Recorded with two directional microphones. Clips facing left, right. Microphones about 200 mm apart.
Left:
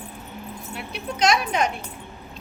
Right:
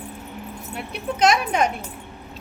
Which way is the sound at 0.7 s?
50° right (ahead or behind).